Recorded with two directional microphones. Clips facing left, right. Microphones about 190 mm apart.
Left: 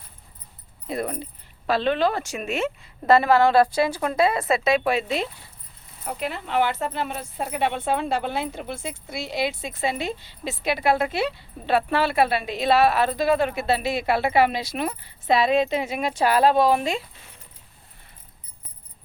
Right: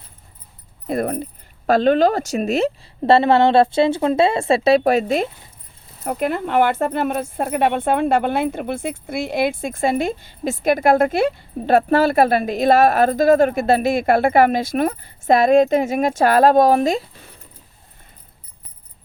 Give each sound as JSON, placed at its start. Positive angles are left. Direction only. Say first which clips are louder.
{"t": 0.9, "sound": "speech", "louder": "right 7 dB", "side_deg": -50}